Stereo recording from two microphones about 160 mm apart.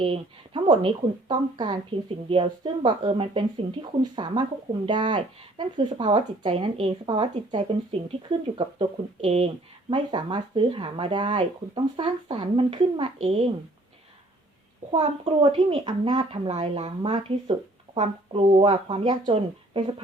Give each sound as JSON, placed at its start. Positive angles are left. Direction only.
{"t": 0.0, "sound": "speech", "side_deg": -30}
{"t": 15.0, "sound": "speech", "side_deg": -35}